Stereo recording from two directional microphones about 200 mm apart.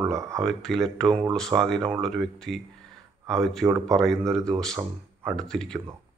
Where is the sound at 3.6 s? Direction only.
15° right (ahead or behind).